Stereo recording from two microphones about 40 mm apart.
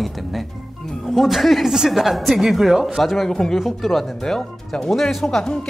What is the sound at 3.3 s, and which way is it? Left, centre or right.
Speech, centre.